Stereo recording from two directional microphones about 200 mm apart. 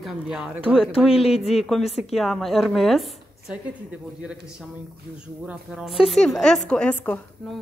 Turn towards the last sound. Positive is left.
turn(degrees=5)  # may be behind; listen again after turning